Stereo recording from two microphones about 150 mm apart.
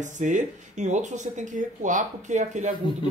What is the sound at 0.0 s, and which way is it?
Speech, 55° right (ahead or behind).